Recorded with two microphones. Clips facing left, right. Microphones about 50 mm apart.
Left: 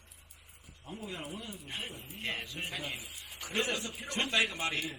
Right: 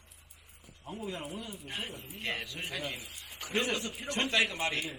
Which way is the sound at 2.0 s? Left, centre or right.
Centre.